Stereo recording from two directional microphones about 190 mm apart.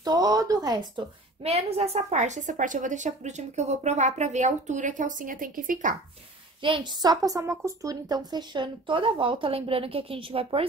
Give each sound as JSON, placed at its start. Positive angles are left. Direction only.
{"t": 0.0, "sound": "a woman's voice", "side_deg": -20}
{"t": 1.4, "sound": "a woman's voice", "side_deg": -35}
{"t": 6.6, "sound": "a woman's voice", "side_deg": -25}